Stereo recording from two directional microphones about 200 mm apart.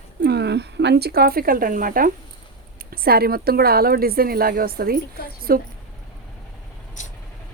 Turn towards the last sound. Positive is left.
turn(degrees=-50)  # may be behind; listen again after turning